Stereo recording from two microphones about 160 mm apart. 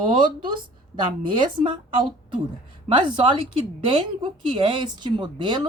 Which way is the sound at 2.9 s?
30° right (ahead or behind).